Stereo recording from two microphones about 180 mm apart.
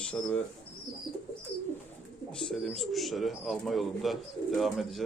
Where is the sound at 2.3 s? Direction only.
5° left (ahead or behind).